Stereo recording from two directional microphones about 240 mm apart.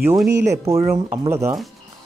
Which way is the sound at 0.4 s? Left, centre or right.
Centre.